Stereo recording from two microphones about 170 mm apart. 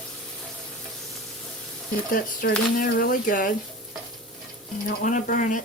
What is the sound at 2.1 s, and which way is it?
Speech, 55° left (ahead or behind).